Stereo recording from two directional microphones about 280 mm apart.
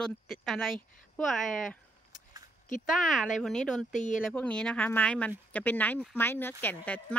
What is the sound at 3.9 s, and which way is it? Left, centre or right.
Speech, left.